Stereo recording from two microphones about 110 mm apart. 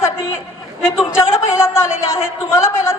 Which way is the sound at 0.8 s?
25° left (ahead or behind).